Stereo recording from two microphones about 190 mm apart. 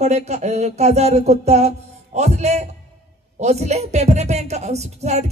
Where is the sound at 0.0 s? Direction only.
35° right (ahead or behind).